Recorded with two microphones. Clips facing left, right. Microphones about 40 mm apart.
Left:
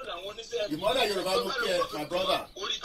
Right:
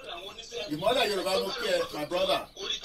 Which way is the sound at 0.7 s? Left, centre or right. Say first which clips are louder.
Right 2 dB; centre.